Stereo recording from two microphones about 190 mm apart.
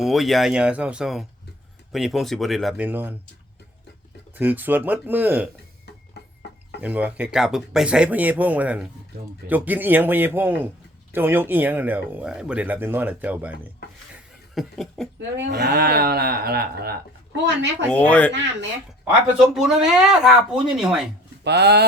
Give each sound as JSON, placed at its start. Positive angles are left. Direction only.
{"t": 0.0, "sound": "speech", "side_deg": 0}
{"t": 4.4, "sound": "speech", "side_deg": -10}
{"t": 6.2, "sound": "a sound", "side_deg": 60}
{"t": 6.8, "sound": "speech", "side_deg": -10}
{"t": 14.5, "sound": "a sound", "side_deg": 0}
{"t": 15.4, "sound": "speech", "side_deg": -65}
{"t": 17.4, "sound": "speech", "side_deg": -65}
{"t": 17.9, "sound": "speech", "side_deg": 5}
{"t": 19.5, "sound": "speech", "side_deg": 0}
{"t": 21.4, "sound": "speech", "side_deg": -60}